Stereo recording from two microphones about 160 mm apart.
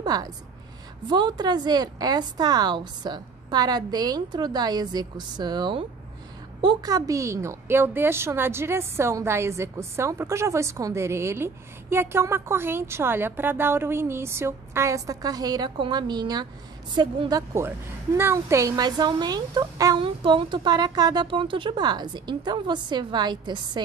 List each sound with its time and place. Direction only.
0.0 s a woman's voice: 25° right (ahead or behind)